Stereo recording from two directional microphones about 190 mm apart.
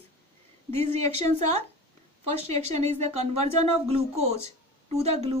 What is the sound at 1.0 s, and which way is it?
Speech, 35° right (ahead or behind).